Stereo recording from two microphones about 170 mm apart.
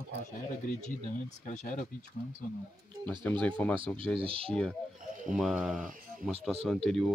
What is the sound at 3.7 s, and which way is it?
Speech, 30° right (ahead or behind).